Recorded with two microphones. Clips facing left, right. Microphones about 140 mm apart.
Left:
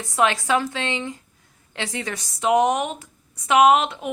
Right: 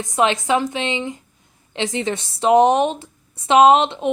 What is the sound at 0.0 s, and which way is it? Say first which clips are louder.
A woman's voice: right 2 dB; 20° right (ahead or behind).